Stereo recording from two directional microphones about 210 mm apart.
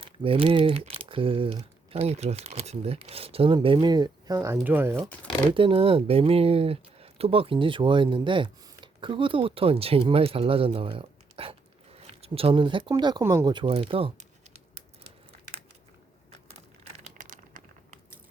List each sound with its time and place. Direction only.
0.0 s speech: 25° right (ahead or behind); by 4.9 s 10° right (ahead or behind)
4.9 s speech: 5° left (ahead or behind)
5.5 s speech: 25° right (ahead or behind)
17.2 s a sound: 40° right (ahead or behind)